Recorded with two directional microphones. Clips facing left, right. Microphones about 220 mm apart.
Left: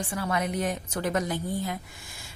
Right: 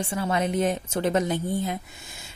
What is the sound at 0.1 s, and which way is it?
A woman's voice, 25° right (ahead or behind).